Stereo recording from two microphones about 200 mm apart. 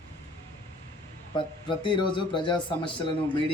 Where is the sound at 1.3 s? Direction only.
25° left (ahead or behind).